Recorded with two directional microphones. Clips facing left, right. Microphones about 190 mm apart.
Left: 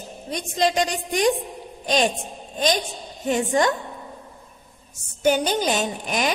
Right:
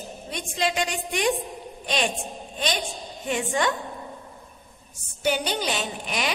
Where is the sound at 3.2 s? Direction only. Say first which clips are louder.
Left 5 dB; 40° left (ahead or behind).